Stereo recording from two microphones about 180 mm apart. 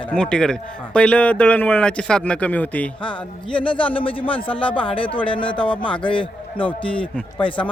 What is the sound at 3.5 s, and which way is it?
Speech, 30° left (ahead or behind).